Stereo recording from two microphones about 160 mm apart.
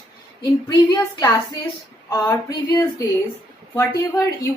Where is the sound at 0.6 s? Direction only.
20° left (ahead or behind).